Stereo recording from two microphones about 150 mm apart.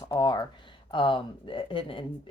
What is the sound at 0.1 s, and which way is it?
Speech, 30° left (ahead or behind).